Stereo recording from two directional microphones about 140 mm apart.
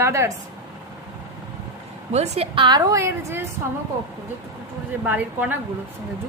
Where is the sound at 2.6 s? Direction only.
30° right (ahead or behind).